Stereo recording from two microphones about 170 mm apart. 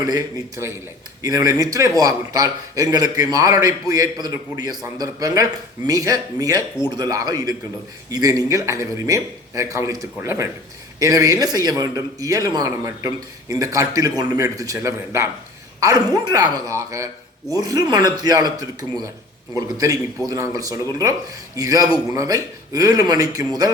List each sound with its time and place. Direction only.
0.0 s a man's voice: 20° right (ahead or behind)